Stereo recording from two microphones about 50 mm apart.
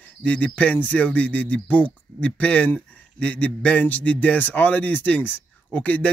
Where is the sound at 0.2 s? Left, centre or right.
Left.